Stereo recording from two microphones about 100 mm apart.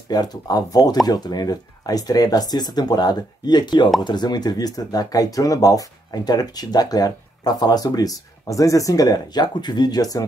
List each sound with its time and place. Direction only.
0.1 s speech: 40° left (ahead or behind)